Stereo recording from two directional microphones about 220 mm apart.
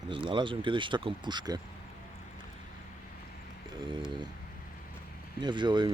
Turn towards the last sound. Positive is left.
turn(degrees=-20)  # may be behind; listen again after turning